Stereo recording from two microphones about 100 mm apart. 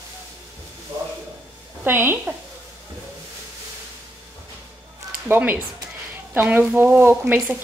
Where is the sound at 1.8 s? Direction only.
20° right (ahead or behind).